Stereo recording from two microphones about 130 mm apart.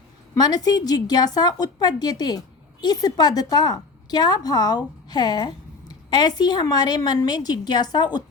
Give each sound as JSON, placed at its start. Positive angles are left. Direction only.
{"t": 0.3, "sound": "a woman's voice", "side_deg": 30}